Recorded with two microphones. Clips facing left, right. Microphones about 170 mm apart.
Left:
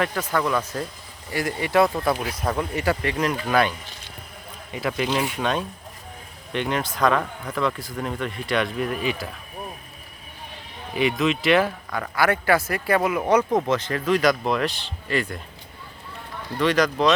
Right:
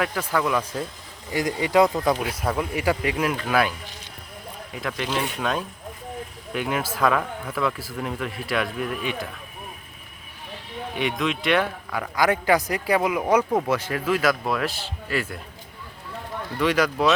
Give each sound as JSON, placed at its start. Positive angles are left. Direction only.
{"t": 0.0, "sound": "a man's voice", "side_deg": -5}
{"t": 1.3, "sound": "a man's voice", "side_deg": -20}
{"t": 2.3, "sound": "a man's voice", "side_deg": -5}
{"t": 4.7, "sound": "speech", "side_deg": 5}
{"t": 10.9, "sound": "speech", "side_deg": 0}
{"t": 11.9, "sound": "a man's voice", "side_deg": -15}
{"t": 16.6, "sound": "a man's voice", "side_deg": -10}